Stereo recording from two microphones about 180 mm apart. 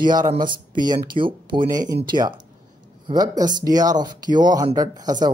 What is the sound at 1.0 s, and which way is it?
Speech, 25° right (ahead or behind).